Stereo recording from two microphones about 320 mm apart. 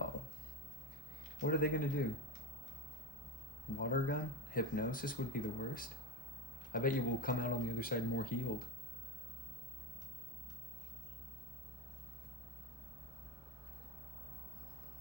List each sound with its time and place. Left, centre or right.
1.4 s speech: left
3.8 s speech: left